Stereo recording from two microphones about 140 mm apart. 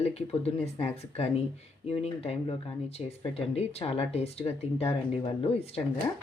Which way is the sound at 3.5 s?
45° left (ahead or behind).